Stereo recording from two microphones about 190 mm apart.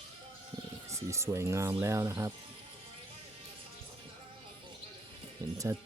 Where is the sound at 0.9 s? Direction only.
15° right (ahead or behind).